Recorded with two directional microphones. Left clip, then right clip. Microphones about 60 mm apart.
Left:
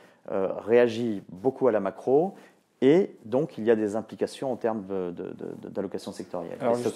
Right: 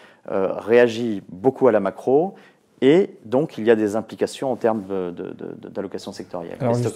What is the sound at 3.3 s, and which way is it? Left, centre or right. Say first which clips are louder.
Speech: right 6 dB; centre.